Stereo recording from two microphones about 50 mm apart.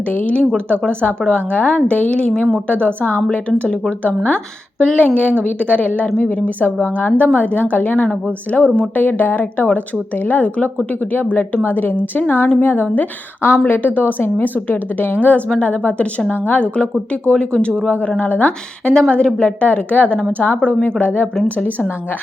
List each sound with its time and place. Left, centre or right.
0.1 s a woman's voice: left
4.8 s a woman's voice: centre
5.0 s a woman's voice: left
18.2 s a woman's voice: left
18.9 s a woman's voice: centre; by 21.2 s left